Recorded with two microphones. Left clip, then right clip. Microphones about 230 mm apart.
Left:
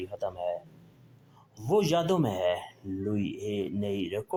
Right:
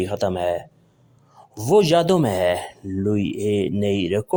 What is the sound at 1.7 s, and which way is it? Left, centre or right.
Speech, right.